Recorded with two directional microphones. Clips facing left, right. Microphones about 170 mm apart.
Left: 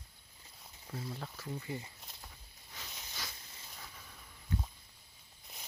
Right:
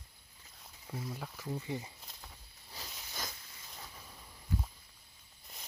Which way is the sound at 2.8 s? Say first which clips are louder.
Right 2 dB; 35° right (ahead or behind).